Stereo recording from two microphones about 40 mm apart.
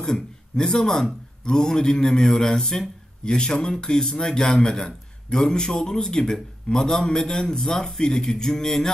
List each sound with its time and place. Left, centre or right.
0.0 s a man's voice: centre